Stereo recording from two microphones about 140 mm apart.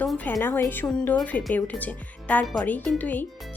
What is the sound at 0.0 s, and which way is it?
A woman's voice, 10° left (ahead or behind).